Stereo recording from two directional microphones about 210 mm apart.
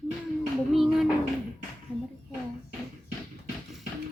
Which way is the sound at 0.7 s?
Centre (ahead or behind).